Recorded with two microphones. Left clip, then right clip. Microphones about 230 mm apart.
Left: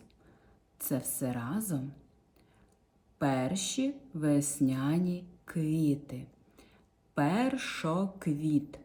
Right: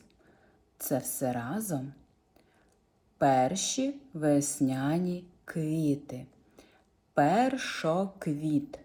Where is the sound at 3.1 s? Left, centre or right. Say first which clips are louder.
Right 7 dB; centre.